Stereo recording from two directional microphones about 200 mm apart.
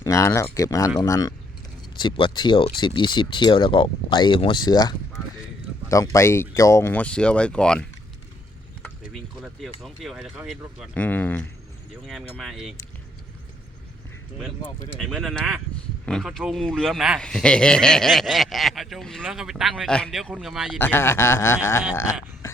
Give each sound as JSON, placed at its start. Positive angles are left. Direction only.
{"t": 0.0, "sound": "speech", "side_deg": 15}
{"t": 9.0, "sound": "a man's voice", "side_deg": 0}
{"t": 14.9, "sound": "a man's voice", "side_deg": 0}
{"t": 20.7, "sound": "speech", "side_deg": 10}